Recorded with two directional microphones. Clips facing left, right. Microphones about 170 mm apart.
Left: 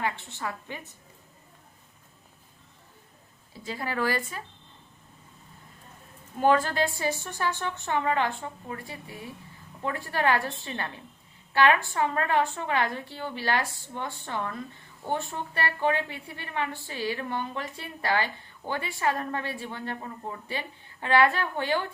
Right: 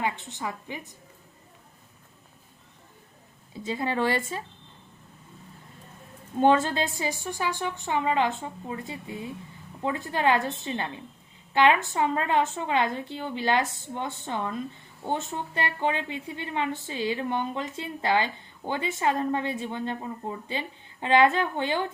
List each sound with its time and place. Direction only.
0.0 s a woman's voice: 15° right (ahead or behind)
3.6 s a woman's voice: 25° right (ahead or behind)
6.4 s a woman's voice: 25° right (ahead or behind)